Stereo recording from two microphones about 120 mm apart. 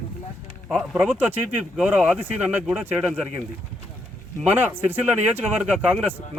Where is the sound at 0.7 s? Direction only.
10° right (ahead or behind).